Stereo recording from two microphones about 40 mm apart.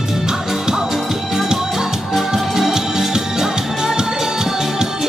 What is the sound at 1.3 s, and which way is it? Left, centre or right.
Music, centre.